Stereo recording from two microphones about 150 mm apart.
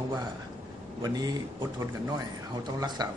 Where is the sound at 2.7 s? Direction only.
25° right (ahead or behind).